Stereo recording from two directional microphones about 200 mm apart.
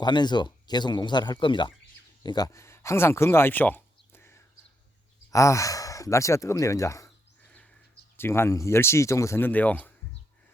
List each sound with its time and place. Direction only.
0.0 s speech: 20° left (ahead or behind)
8.1 s speech: 10° left (ahead or behind)